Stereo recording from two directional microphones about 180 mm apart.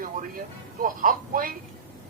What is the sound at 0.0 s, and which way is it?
Speech, 50° right (ahead or behind).